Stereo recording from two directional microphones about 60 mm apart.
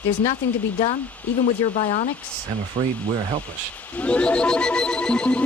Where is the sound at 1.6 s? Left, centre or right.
Left.